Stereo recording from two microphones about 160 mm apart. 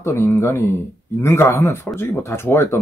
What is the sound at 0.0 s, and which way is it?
Speech, 15° left (ahead or behind).